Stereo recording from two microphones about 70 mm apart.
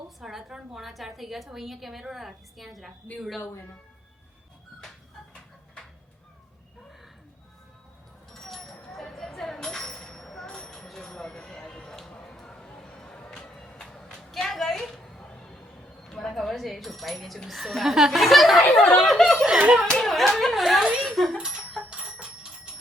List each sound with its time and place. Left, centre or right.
0.2 s a woman's voice: centre
8.3 s a sound: centre
18.9 s a woman's voice: centre
19.5 s speech: centre
19.9 s a woman's voice: centre
21.3 s bicycle bell: centre